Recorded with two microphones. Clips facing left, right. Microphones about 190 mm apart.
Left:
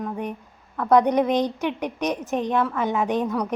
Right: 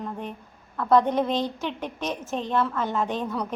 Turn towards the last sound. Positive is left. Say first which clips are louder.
# left 4 dB
turn(degrees=15)  # may be behind; listen again after turning